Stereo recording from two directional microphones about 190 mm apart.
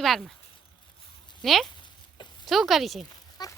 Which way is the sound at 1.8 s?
25° left (ahead or behind).